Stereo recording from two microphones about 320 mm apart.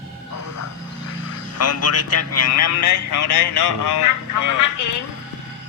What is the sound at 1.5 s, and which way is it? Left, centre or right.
A man's voice, left.